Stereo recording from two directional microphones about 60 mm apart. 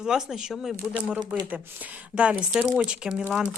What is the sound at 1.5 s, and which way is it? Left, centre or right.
A woman's voice, right.